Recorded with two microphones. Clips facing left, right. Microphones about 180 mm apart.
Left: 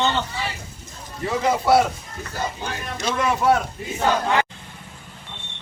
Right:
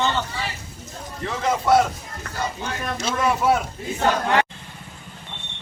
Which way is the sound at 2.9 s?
5° right (ahead or behind).